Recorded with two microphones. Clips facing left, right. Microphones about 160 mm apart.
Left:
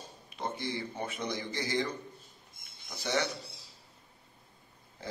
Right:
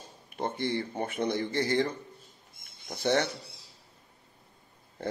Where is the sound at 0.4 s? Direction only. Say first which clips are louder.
Right 5 dB; 60° right (ahead or behind).